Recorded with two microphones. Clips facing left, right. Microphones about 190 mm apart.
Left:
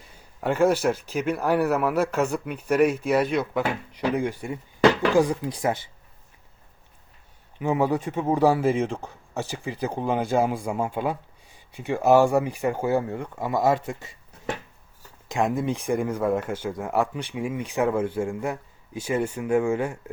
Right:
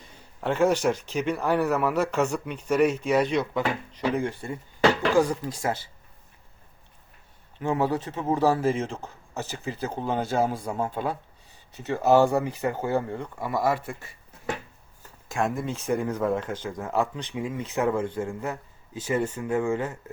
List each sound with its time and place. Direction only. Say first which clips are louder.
0.0 s speech: left 2 dB; 10° left (ahead or behind)
7.6 s speech: left 2 dB; 15° left (ahead or behind)
13.4 s speech: left 3 dB; 20° left (ahead or behind)
15.3 s speech: left 3 dB; 20° left (ahead or behind)